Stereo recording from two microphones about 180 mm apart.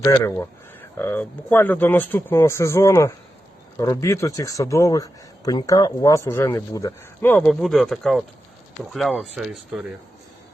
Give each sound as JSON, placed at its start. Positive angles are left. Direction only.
{"t": 0.0, "sound": "speech", "side_deg": 15}
{"t": 7.6, "sound": "speech", "side_deg": 0}